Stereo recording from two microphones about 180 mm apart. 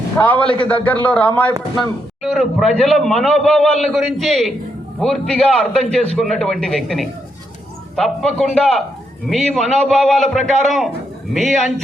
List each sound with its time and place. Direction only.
0.2 s a man's voice: 10° left (ahead or behind)
0.4 s a man's voice: 30° left (ahead or behind)
0.7 s a man's voice: 10° left (ahead or behind)